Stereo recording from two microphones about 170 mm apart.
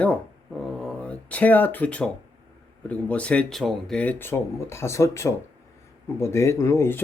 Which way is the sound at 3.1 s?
5° left (ahead or behind).